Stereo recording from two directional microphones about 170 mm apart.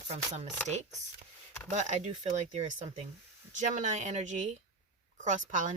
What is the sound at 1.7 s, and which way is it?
Speech, 45° right (ahead or behind).